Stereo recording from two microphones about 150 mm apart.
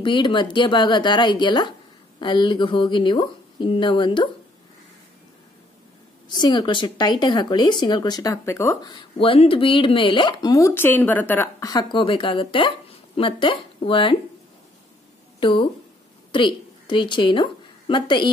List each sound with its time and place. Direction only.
0.0 s speech: 30° left (ahead or behind)
6.2 s speech: 30° left (ahead or behind)
16.3 s a woman's voice: 35° left (ahead or behind)